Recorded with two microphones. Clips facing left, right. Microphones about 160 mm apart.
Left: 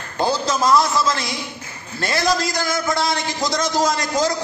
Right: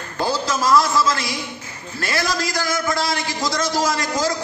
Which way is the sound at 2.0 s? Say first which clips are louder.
Left 3 dB; 25° left (ahead or behind).